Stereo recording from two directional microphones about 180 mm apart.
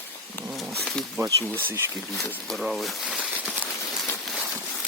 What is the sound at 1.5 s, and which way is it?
Speech, 15° right (ahead or behind).